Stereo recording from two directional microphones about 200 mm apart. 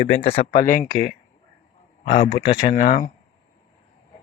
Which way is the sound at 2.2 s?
25° left (ahead or behind).